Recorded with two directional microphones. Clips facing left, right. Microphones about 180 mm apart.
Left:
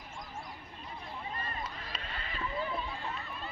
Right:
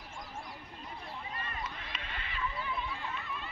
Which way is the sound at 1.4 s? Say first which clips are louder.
Left 1 dB; 35° left (ahead or behind).